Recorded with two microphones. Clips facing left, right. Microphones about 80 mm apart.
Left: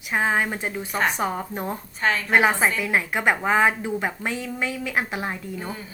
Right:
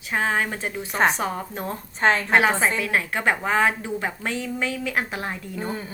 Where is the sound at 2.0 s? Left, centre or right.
Right.